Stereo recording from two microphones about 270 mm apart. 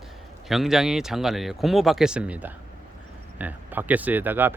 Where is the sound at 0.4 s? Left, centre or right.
Centre.